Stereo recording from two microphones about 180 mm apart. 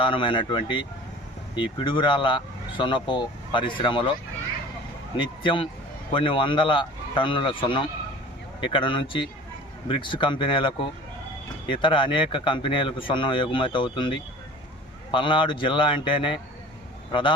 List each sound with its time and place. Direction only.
0.0 s speech: 30° left (ahead or behind)
5.1 s a man's voice: 25° left (ahead or behind)